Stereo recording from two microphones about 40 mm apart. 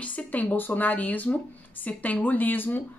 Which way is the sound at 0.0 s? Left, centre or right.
Left.